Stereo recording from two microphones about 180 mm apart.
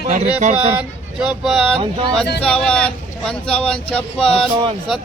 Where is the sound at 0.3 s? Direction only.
40° right (ahead or behind).